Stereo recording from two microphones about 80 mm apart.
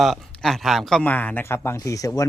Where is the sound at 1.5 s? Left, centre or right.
Left.